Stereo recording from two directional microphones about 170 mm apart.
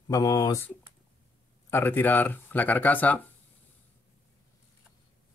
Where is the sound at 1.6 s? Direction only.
15° left (ahead or behind).